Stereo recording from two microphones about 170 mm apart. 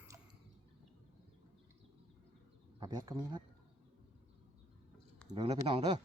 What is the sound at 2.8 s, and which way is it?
Speech, 25° right (ahead or behind).